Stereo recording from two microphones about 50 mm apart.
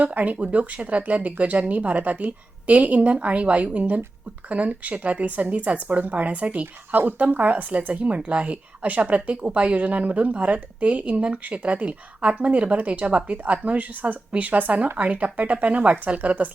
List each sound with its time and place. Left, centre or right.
0.0 s speech: right